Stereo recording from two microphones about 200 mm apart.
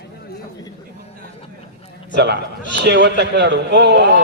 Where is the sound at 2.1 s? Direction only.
60° right (ahead or behind).